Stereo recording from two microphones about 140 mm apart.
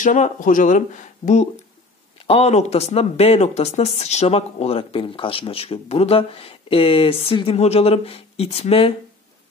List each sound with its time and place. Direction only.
0.0 s speech: 65° left (ahead or behind)
2.2 s speech: 50° left (ahead or behind)